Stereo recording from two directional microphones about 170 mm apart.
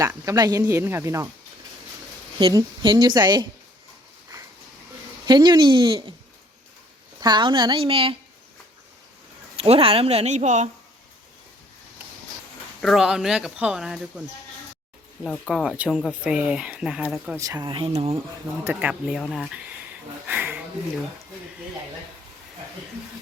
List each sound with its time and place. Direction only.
0.1 s speech: 20° right (ahead or behind)
2.4 s a woman's voice: 25° right (ahead or behind)
5.2 s a woman's voice: 25° right (ahead or behind)
7.2 s a woman's voice: 25° right (ahead or behind)
9.6 s speech: 35° right (ahead or behind)
12.8 s speech: centre (ahead or behind)
17.3 s a woman's voice: 20° right (ahead or behind)
18.6 s speech: 10° right (ahead or behind)
20.2 s a sound: 10° right (ahead or behind)